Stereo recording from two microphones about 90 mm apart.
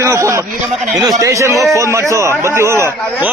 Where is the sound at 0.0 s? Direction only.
35° right (ahead or behind).